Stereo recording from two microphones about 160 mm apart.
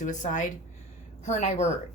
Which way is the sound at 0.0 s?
50° left (ahead or behind).